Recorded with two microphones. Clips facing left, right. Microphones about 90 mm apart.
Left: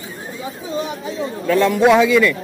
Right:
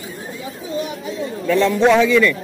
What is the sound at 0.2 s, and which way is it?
A man's voice, 25° left (ahead or behind).